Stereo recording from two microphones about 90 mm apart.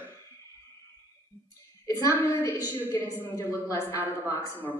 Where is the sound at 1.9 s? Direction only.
45° left (ahead or behind).